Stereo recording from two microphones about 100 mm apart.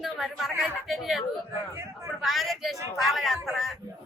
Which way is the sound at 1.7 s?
30° right (ahead or behind).